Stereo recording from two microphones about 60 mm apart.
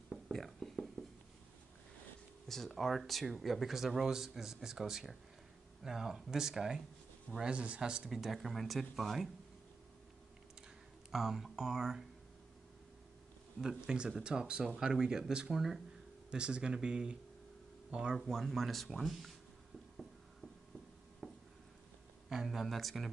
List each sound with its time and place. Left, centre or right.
0.1 s whispering: centre
2.4 s speech: centre
11.1 s speech: centre
13.8 s speech: centre
18.1 s speech: centre
21.2 s a sound: centre
22.3 s speech: centre